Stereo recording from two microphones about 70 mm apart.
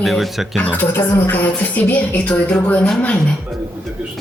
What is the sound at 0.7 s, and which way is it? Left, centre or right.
Speech, left.